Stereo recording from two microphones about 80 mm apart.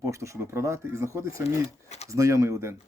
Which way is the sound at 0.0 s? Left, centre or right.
Right.